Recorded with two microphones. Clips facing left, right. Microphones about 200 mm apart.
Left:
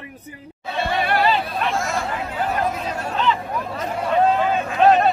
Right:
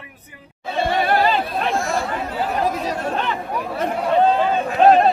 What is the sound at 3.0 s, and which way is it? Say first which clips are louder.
Speech: left 1 dB; 55° right (ahead or behind).